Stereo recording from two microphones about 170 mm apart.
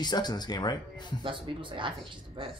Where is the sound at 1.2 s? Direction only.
30° right (ahead or behind).